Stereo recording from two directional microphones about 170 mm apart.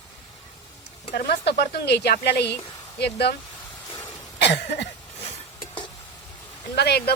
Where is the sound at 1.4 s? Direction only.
80° left.